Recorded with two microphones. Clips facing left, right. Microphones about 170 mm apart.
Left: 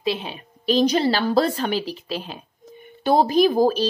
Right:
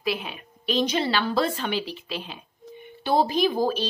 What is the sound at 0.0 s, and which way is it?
Speech, 30° left (ahead or behind).